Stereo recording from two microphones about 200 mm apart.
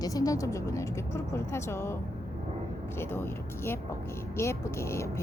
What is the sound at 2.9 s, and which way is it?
Speech, 10° left (ahead or behind).